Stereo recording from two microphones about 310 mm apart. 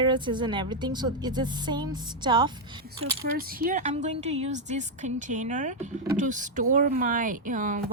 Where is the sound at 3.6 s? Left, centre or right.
Right.